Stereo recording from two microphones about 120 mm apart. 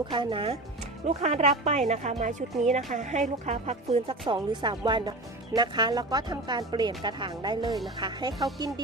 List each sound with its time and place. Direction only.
0.1 s speech: 45° right (ahead or behind)
1.0 s speech: 65° right (ahead or behind)
2.6 s speech: 85° right; by 8.4 s 35° right (ahead or behind)